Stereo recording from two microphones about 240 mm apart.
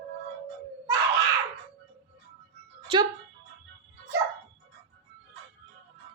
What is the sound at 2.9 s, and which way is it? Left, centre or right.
Speech, right.